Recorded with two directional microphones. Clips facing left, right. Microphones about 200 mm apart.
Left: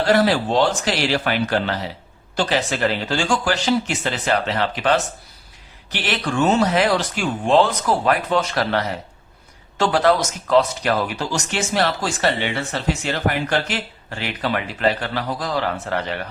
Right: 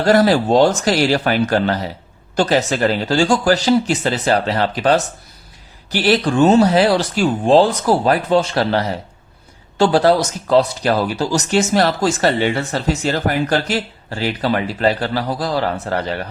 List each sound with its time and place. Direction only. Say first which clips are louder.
0.0 s a man's voice: right 4 dB; 45° right (ahead or behind)